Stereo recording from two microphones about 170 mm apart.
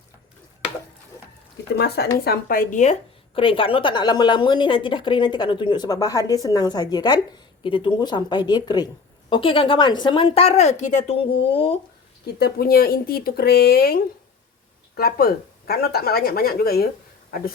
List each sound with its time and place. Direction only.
2.2 s speech: 60° left (ahead or behind)
3.3 s a woman's voice: 30° left (ahead or behind)
12.4 s speech: 65° left (ahead or behind)